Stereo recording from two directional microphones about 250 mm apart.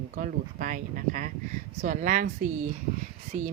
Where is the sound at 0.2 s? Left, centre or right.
Right.